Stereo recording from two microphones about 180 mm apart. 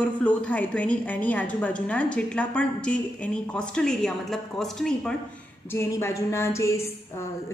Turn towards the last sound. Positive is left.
turn(degrees=15)  # may be behind; listen again after turning